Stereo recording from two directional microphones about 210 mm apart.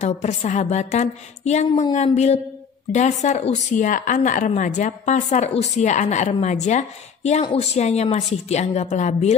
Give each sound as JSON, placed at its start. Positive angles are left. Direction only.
{"t": 0.0, "sound": "speech", "side_deg": 30}